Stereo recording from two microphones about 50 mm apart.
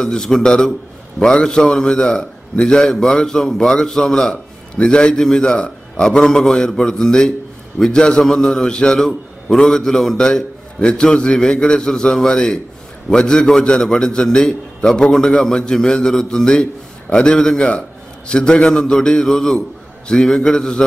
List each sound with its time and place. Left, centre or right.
0.0 s a man's voice: centre